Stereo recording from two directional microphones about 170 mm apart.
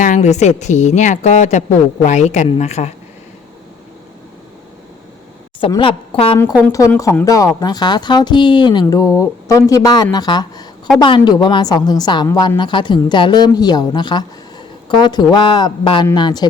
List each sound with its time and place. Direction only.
0.0 s a woman's voice: 45° left (ahead or behind)
5.5 s a woman's voice: 30° left (ahead or behind)
6.7 s a woman's voice: 20° left (ahead or behind)